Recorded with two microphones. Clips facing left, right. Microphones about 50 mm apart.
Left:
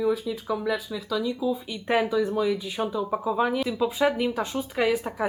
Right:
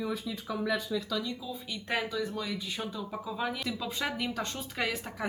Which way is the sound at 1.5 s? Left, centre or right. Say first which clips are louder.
Left 9 dB; centre.